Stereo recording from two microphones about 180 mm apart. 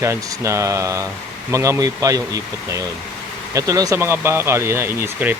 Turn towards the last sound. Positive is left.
turn(degrees=-10)  # may be behind; listen again after turning